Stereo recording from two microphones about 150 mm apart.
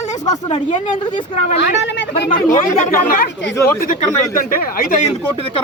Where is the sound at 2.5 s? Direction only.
60° left (ahead or behind).